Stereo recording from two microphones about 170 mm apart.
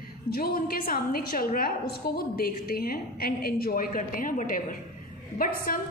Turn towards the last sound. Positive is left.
turn(degrees=55)  # may be behind; listen again after turning